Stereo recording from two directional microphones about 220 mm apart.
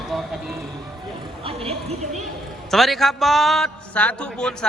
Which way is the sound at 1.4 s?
25° right (ahead or behind).